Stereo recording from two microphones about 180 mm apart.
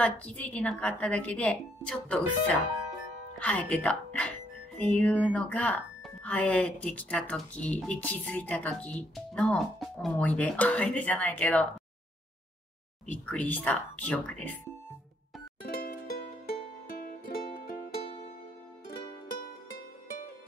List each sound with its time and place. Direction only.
0.0 s speech: 10° left (ahead or behind)
13.0 s speech: 5° left (ahead or behind)
15.6 s music: 55° left (ahead or behind)